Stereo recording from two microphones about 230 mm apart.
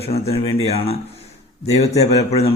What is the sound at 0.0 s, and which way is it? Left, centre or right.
Speech, left.